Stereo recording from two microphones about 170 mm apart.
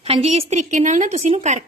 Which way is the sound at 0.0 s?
35° right (ahead or behind).